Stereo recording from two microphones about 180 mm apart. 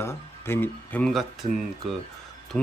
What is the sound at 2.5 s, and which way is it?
Speech, 5° left (ahead or behind).